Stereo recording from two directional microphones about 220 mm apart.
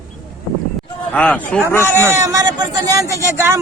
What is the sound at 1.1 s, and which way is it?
Speech, 5° left (ahead or behind).